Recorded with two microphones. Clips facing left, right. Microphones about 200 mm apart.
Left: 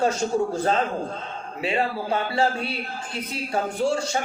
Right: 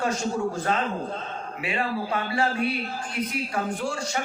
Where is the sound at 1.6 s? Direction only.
25° left (ahead or behind).